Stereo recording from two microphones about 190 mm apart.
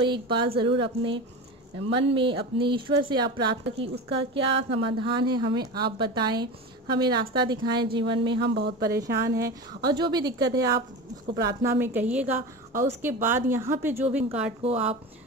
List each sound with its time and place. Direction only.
0.0 s a woman's voice: 25° right (ahead or behind)
8.4 s speech: 65° right (ahead or behind)
8.8 s a woman's voice: 15° right (ahead or behind)
14.6 s speech: 35° right (ahead or behind)